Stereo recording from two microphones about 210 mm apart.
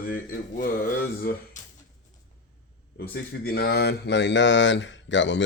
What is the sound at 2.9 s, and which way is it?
Speech, 50° left (ahead or behind).